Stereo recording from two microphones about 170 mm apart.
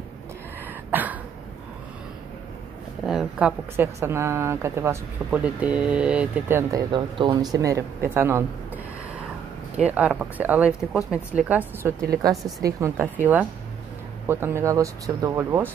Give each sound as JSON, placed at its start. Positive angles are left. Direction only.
{"t": 0.9, "sound": "a sound", "side_deg": -10}
{"t": 3.1, "sound": "a woman's voice", "side_deg": -5}
{"t": 6.7, "sound": "speech", "side_deg": -30}
{"t": 9.8, "sound": "a woman's voice", "side_deg": -10}
{"t": 12.2, "sound": "a woman's voice", "side_deg": -20}
{"t": 14.2, "sound": "a woman's voice", "side_deg": -15}